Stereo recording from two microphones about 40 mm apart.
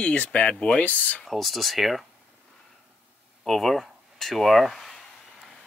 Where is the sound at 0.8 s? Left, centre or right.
Left.